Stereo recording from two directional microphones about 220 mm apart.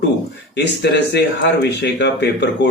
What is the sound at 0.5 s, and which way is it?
Speech, 50° left (ahead or behind).